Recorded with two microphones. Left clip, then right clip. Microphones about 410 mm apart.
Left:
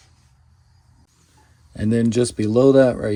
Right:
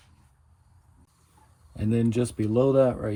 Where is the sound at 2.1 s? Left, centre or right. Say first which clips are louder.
Left 7 dB; centre.